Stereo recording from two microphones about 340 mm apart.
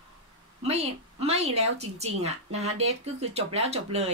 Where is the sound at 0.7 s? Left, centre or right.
Centre.